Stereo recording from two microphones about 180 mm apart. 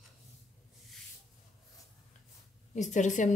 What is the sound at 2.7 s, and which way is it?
Speech, 40° left (ahead or behind).